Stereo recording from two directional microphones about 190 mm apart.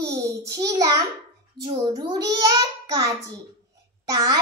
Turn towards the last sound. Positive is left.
turn(degrees=-20)  # may be behind; listen again after turning